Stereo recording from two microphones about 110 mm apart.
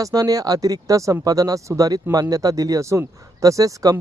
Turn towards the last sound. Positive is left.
turn(degrees=-30)  # may be behind; listen again after turning